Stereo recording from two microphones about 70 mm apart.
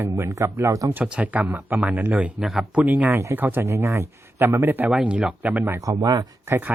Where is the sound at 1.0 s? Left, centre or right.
Right.